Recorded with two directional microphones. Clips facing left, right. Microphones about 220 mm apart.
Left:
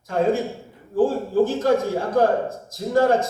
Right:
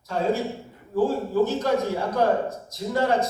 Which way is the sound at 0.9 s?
50° left (ahead or behind).